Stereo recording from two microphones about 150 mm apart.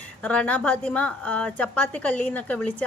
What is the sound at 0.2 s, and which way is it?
A woman's voice, 10° left (ahead or behind).